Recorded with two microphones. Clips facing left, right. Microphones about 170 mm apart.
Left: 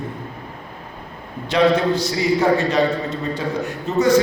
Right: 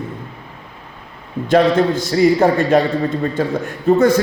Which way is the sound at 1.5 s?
50° right (ahead or behind).